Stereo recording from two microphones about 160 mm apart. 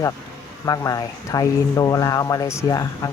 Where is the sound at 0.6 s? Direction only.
20° left (ahead or behind).